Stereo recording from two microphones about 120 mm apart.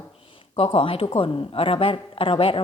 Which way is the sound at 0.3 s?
50° left (ahead or behind).